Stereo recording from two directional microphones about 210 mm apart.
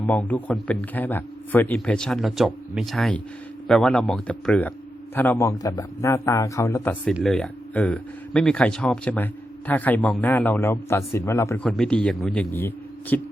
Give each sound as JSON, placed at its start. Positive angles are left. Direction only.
{"t": 0.0, "sound": "speech", "side_deg": 5}
{"t": 7.0, "sound": "speech", "side_deg": 0}